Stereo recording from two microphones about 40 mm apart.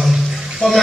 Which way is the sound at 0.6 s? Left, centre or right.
Centre.